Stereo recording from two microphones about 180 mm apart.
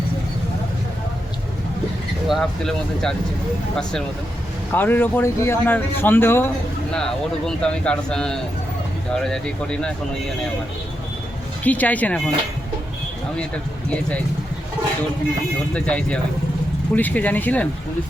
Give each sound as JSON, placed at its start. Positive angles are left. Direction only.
{"t": 2.2, "sound": "speech", "side_deg": 0}
{"t": 4.7, "sound": "speech", "side_deg": 10}
{"t": 11.6, "sound": "speech", "side_deg": 10}
{"t": 15.7, "sound": "speech", "side_deg": 5}